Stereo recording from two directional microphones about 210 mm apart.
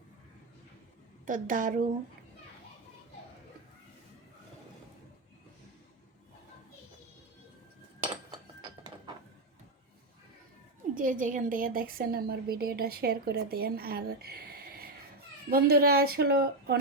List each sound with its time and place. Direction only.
1.2 s a woman's voice: 40° right (ahead or behind)
8.6 s music: 20° right (ahead or behind)
10.9 s a woman's voice: 40° right (ahead or behind)